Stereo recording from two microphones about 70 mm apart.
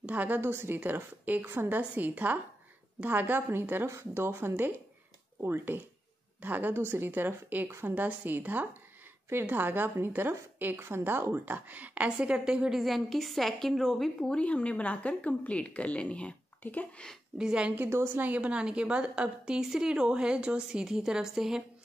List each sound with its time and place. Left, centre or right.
0.0 s a woman's voice: right
1.8 s a woman's voice: right; by 14.3 s centre
14.3 s speech: centre
17.4 s a woman's voice: centre
17.8 s a woman's voice: right; by 21.6 s centre